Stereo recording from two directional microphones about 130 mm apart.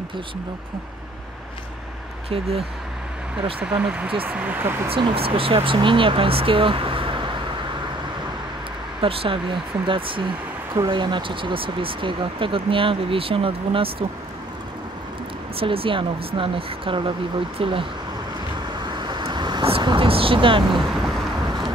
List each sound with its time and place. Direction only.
2.2 s speech: 50° right (ahead or behind)
3.5 s speech: 10° right (ahead or behind)
4.8 s speech: 45° right (ahead or behind)
9.0 s speech: 40° right (ahead or behind)
15.6 s speech: 45° right (ahead or behind)
18.8 s vehicle: 35° right (ahead or behind)